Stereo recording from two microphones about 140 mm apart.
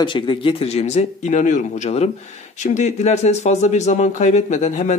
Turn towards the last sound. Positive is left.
turn(degrees=60)  # may be behind; listen again after turning